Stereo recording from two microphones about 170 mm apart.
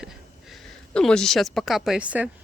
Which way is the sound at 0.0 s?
Centre (ahead or behind).